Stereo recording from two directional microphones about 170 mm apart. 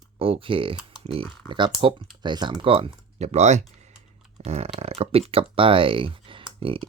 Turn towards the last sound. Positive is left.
turn(degrees=-30)  # may be behind; listen again after turning